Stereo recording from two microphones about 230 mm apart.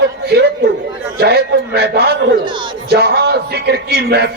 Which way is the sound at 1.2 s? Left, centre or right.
Right.